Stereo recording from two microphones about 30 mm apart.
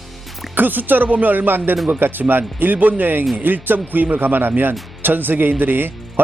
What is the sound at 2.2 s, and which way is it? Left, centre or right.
Speech, right.